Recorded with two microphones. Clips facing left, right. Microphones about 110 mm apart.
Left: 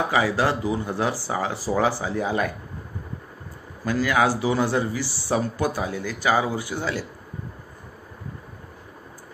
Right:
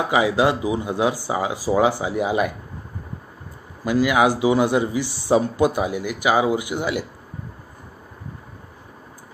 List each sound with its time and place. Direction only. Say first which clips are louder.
0.1 s a man's voice: right 7 dB; 15° right (ahead or behind)
3.8 s a man's voice: right 4 dB; 15° right (ahead or behind)